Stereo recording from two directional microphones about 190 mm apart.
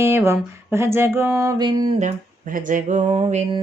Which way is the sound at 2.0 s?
40° right (ahead or behind).